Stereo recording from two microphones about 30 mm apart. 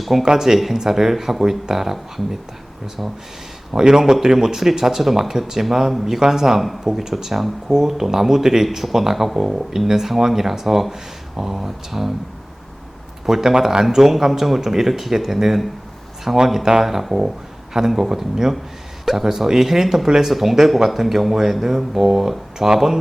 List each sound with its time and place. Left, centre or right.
0.0 s speech: centre
0.3 s speech: centre
3.7 s speech: centre
7.3 s speech: centre
13.2 s speech: centre